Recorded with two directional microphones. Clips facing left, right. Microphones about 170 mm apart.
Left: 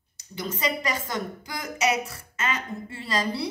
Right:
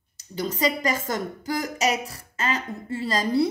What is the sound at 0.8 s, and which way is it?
Speech, 45° right (ahead or behind).